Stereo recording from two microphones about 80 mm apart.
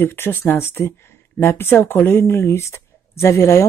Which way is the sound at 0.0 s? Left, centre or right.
Left.